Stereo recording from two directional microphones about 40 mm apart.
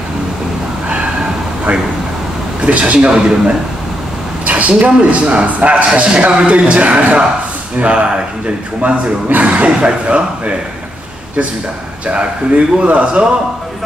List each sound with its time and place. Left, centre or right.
2.6 s a man's voice: right
4.5 s a man's voice: right
12.1 s speech: right